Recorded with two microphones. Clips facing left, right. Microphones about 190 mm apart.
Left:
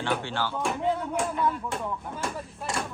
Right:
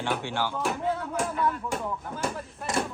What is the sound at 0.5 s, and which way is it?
Speech, centre (ahead or behind).